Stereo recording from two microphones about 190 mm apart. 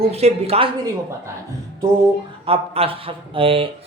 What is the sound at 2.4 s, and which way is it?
Speech, 30° right (ahead or behind).